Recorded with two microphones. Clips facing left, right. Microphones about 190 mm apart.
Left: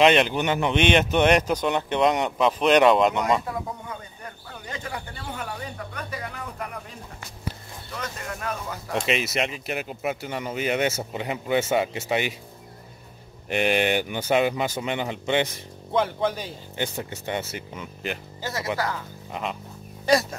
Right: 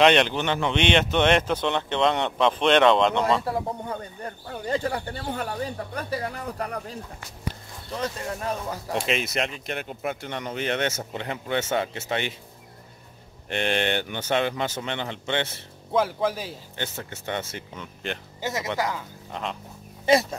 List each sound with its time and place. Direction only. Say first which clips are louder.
0.0 s speech: even; 5° left (ahead or behind)
0.4 s speech: left 2 dB; 15° left (ahead or behind)
3.4 s speech: right 4 dB; 35° right (ahead or behind)
9.0 s speech: left 2 dB; 5° left (ahead or behind)
13.5 s speech: left 3 dB; 10° left (ahead or behind)
15.9 s speech: even; 5° right (ahead or behind)
16.7 s speech: left 6 dB; 15° left (ahead or behind)
18.4 s speech: right 1 dB; 20° right (ahead or behind)